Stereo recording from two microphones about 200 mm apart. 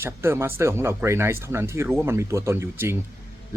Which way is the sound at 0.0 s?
10° right (ahead or behind).